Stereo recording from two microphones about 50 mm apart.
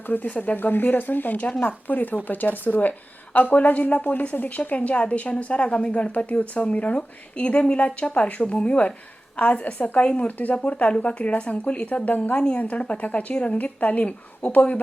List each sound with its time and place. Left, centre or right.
0.1 s a woman's voice: left